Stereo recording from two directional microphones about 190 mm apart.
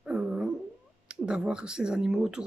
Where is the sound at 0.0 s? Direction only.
5° right (ahead or behind).